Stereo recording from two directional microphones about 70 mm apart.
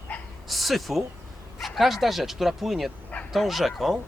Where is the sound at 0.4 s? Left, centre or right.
Centre.